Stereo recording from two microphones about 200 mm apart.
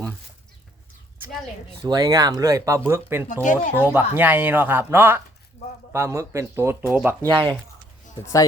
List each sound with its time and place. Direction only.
1.8 s speech: 20° right (ahead or behind)
3.4 s speech: 40° left (ahead or behind)
3.8 s speech: 10° right (ahead or behind)
8.2 s speech: 15° left (ahead or behind)